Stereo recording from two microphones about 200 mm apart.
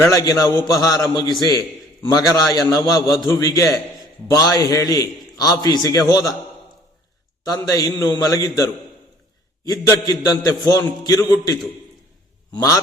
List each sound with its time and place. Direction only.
0.0 s a man's voice: 15° left (ahead or behind)
7.4 s a man's voice: 20° left (ahead or behind)
12.5 s a man's voice: 15° left (ahead or behind)